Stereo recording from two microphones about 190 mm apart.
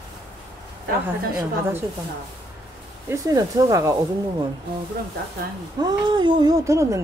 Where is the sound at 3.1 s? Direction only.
15° right (ahead or behind).